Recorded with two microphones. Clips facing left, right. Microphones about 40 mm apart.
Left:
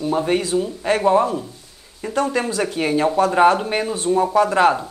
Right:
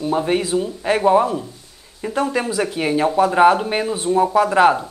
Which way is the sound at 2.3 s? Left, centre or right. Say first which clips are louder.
Even; centre.